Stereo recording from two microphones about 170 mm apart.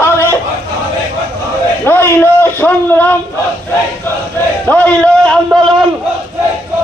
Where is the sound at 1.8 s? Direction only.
10° left (ahead or behind).